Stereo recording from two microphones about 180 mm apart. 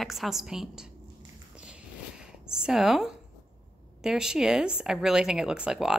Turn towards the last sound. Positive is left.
turn(degrees=-5)  # may be behind; listen again after turning